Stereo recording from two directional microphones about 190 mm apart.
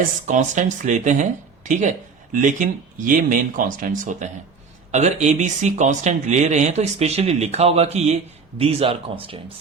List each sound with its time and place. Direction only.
0.0 s speech: 40° right (ahead or behind)